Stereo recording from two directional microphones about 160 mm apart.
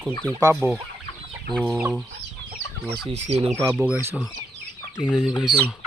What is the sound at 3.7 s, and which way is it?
Speech, 10° right (ahead or behind).